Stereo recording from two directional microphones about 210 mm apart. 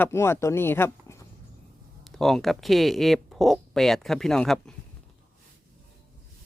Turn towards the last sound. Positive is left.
turn(degrees=5)  # may be behind; listen again after turning